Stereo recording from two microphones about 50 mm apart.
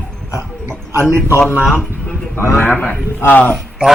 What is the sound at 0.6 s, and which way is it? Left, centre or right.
Speech, right.